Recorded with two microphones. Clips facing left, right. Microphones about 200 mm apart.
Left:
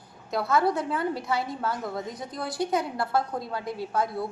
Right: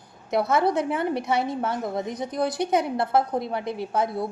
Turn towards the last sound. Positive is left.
turn(degrees=-20)  # may be behind; listen again after turning